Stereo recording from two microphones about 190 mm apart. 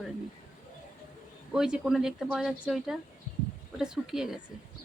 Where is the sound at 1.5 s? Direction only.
5° right (ahead or behind).